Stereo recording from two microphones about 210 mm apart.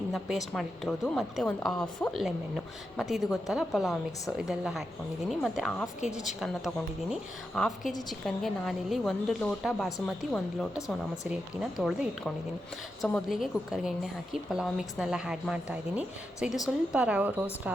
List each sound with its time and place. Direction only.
0.1 s a woman's voice: centre (ahead or behind)